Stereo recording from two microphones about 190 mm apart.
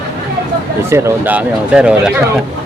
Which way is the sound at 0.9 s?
15° right (ahead or behind).